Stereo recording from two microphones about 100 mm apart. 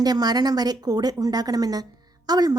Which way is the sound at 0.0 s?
40° right (ahead or behind).